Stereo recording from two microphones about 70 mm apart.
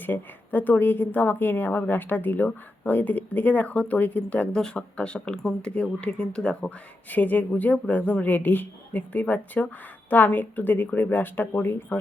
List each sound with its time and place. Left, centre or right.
0.0 s a woman's voice: left